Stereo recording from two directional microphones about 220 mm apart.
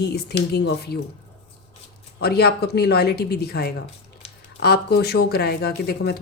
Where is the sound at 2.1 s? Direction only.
45° left (ahead or behind).